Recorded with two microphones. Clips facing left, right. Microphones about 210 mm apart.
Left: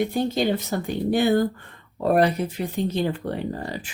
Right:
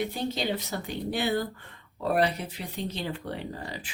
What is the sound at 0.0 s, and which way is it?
Speech, 50° left (ahead or behind).